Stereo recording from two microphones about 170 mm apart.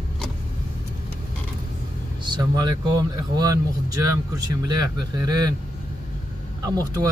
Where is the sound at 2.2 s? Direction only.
25° right (ahead or behind).